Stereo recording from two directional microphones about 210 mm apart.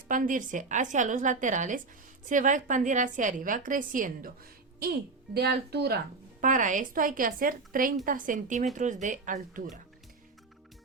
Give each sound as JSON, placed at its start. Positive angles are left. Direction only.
{"t": 0.1, "sound": "a woman's voice", "side_deg": -40}
{"t": 6.4, "sound": "a woman's voice", "side_deg": -40}